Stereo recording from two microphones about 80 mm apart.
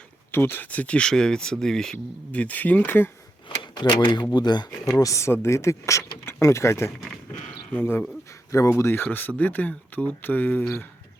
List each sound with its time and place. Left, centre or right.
0.3 s speech: left; by 2.0 s centre
2.3 s speech: centre
3.6 s speech: left
4.9 s speech: left
8.4 s speech: left
8.8 s speech: left